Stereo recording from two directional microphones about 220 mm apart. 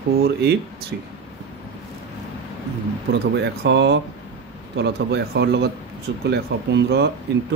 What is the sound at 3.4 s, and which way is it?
Speech, 50° right (ahead or behind).